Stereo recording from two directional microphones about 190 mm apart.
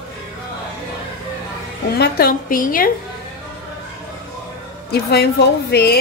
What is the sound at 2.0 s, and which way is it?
Speech, 50° left (ahead or behind).